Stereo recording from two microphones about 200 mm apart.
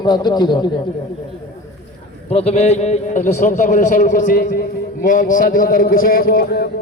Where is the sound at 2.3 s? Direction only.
30° left (ahead or behind).